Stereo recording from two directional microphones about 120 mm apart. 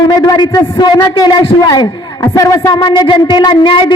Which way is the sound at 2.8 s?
40° left (ahead or behind).